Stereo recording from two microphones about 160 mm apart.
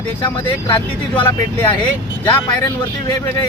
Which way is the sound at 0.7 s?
15° left (ahead or behind).